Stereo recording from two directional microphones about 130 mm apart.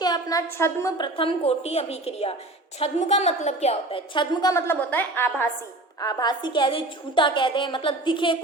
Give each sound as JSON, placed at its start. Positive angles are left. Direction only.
{"t": 0.0, "sound": "a woman's voice", "side_deg": 30}
{"t": 0.9, "sound": "a woman's voice", "side_deg": 40}
{"t": 4.5, "sound": "a woman's voice", "side_deg": 20}
{"t": 6.0, "sound": "a woman's voice", "side_deg": 30}